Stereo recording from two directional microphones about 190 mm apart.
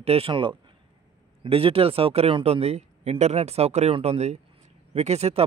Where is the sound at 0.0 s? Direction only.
30° right (ahead or behind).